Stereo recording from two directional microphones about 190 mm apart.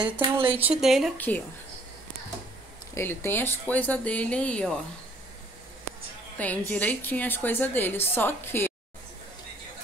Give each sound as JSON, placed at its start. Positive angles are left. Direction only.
{"t": 0.2, "sound": "speech", "side_deg": -30}
{"t": 0.7, "sound": "speech", "side_deg": 0}
{"t": 1.1, "sound": "a woman's voice", "side_deg": 10}
{"t": 2.9, "sound": "a woman's voice", "side_deg": 10}
{"t": 6.3, "sound": "a woman's voice", "side_deg": 10}